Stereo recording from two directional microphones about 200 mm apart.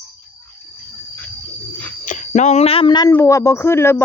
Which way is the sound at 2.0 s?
35° left (ahead or behind).